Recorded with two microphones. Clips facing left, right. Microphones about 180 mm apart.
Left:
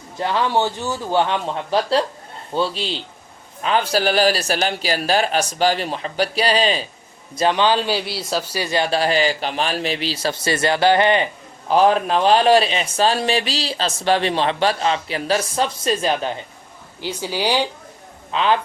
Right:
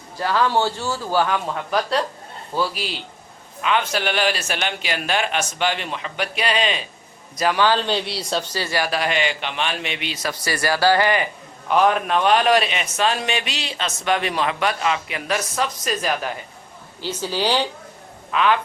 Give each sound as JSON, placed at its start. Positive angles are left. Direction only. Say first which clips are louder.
{"t": 0.2, "sound": "a man's voice", "louder": "even", "side_deg": 20}
{"t": 7.3, "sound": "a man's voice", "louder": "left 2 dB", "side_deg": 25}
{"t": 17.0, "sound": "a woman's voice", "louder": "even", "side_deg": 15}
{"t": 18.3, "sound": "a man's voice", "louder": "left 1 dB", "side_deg": 30}